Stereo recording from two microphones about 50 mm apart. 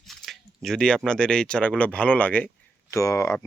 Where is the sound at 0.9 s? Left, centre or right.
Centre; by 2.5 s left.